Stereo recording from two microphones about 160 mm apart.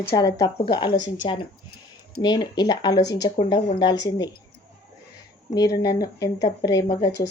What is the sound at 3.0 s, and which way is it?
Speech, 90° left.